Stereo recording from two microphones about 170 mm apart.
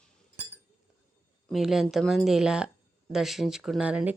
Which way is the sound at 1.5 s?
Centre (ahead or behind).